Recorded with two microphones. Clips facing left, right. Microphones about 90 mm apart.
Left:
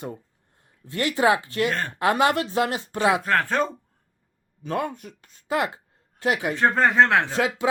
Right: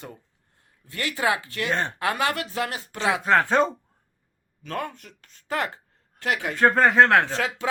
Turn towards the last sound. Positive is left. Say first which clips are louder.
# left 4 dB
turn(degrees=20)  # may be behind; listen again after turning